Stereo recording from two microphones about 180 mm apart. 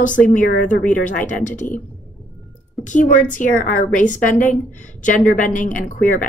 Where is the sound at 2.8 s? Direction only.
45° left (ahead or behind).